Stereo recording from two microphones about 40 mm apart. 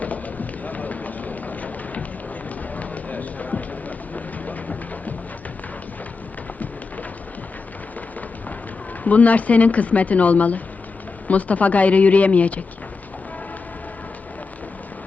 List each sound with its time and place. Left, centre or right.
0.0 s run: left
9.0 s speech: left